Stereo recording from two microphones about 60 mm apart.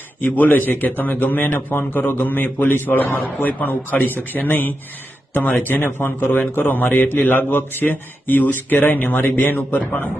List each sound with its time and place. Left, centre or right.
0.2 s a man's voice: left